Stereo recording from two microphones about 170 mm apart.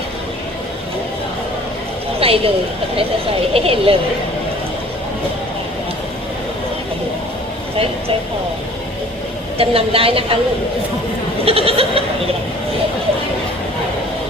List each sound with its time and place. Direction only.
2.2 s a woman's voice: 35° right (ahead or behind)
3.5 s a woman's voice: 35° right (ahead or behind)
9.6 s a woman's voice: 35° right (ahead or behind)
11.4 s a woman's voice: 35° right (ahead or behind)